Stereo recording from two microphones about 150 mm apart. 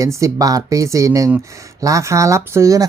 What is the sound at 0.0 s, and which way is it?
Speech, 20° right (ahead or behind).